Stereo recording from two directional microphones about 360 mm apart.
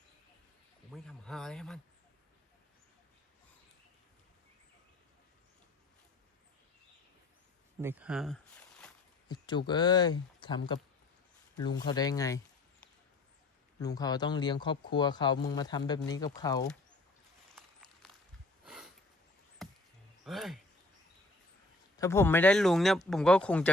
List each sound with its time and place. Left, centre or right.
0.9 s a man's voice: centre
7.8 s speech: centre
11.9 s speech: centre
13.7 s speech: centre
17.5 s walk: centre
18.6 s a sound: centre
20.2 s speech: centre
21.9 s a man's voice: centre